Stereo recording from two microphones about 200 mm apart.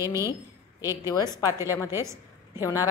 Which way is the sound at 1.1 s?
20° left (ahead or behind).